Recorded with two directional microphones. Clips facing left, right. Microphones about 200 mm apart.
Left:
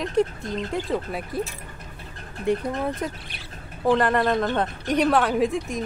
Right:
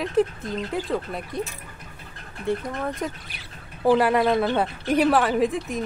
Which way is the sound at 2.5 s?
15° left (ahead or behind).